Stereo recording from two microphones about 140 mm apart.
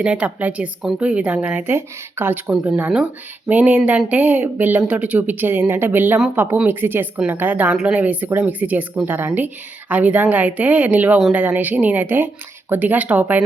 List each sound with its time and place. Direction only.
0.0 s speech: 10° right (ahead or behind)